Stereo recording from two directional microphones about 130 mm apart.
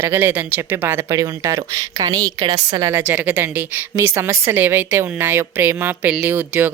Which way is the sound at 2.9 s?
15° right (ahead or behind).